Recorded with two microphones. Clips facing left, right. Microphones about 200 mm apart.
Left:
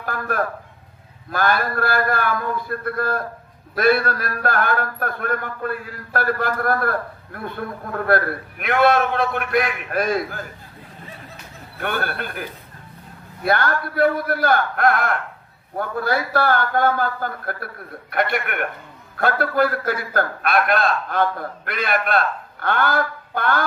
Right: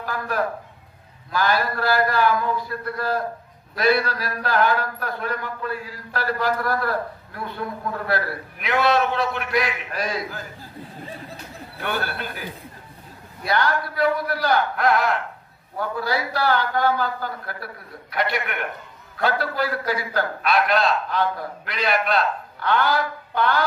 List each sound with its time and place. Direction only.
0.0 s a sound: 55° left (ahead or behind)
1.3 s a man's voice: 55° left (ahead or behind)
11.8 s a man's voice: 55° left (ahead or behind)